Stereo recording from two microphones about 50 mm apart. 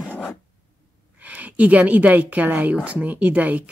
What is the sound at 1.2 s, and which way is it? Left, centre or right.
A woman's voice, right.